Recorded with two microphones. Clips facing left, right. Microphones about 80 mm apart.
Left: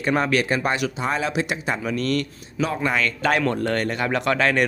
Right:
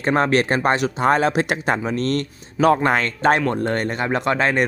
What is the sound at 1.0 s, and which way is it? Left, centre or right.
Speech, right.